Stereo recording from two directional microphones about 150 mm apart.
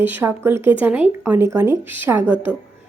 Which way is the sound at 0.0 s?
15° right (ahead or behind).